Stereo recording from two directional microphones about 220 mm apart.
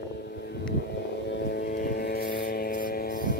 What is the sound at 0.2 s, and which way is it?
Vehicle, 50° left (ahead or behind).